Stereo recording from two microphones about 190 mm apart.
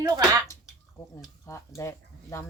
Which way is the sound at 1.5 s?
15° left (ahead or behind).